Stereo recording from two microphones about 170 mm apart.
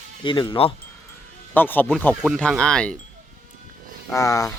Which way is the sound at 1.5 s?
10° left (ahead or behind).